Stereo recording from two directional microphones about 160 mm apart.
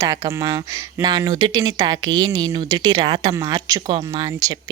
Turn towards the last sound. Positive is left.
turn(degrees=-25)  # may be behind; listen again after turning